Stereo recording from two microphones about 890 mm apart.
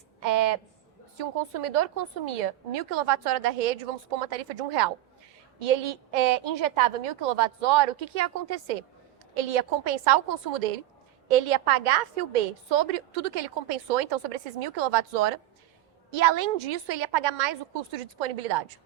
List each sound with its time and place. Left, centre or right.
0.2 s a woman's voice: right